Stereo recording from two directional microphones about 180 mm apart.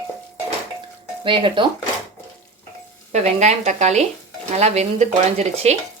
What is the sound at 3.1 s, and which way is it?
Speech, 40° right (ahead or behind).